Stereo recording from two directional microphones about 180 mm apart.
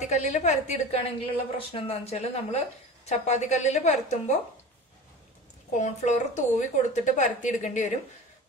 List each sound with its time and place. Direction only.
0.0 s a woman's voice: 40° left (ahead or behind)
5.8 s a woman's voice: 40° left (ahead or behind)